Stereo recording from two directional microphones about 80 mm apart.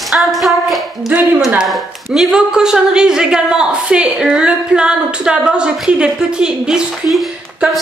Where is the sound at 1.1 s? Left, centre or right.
Right.